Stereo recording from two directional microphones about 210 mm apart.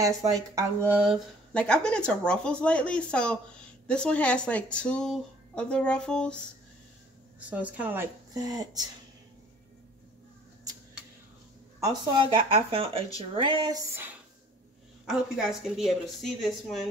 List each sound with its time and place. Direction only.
0.3 s speech: 15° right (ahead or behind); by 6.3 s 5° left (ahead or behind)
7.3 s speech: 5° right (ahead or behind)
11.8 s speech: 20° right (ahead or behind)
12.7 s a sound: 25° right (ahead or behind)
15.0 s speech: centre (ahead or behind)